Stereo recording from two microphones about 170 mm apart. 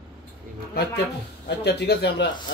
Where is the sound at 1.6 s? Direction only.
75° left (ahead or behind).